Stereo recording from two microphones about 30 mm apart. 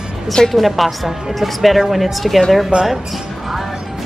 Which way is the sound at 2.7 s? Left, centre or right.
Right.